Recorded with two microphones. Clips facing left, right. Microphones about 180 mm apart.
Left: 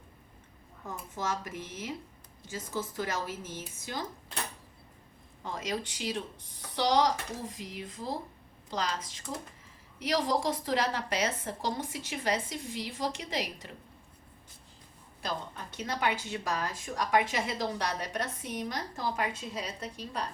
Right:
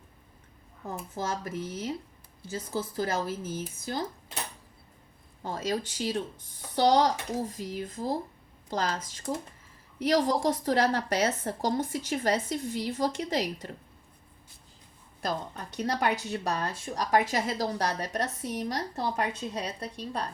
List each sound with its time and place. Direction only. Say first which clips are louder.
1.1 s speech: right 2 dB; 35° right (ahead or behind)
5.4 s a woman's voice: right 4 dB; 35° right (ahead or behind)
15.7 s speech: right 4 dB; 40° right (ahead or behind)